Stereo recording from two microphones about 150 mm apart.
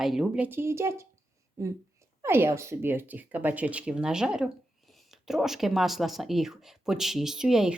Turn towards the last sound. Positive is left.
turn(degrees=-5)  # may be behind; listen again after turning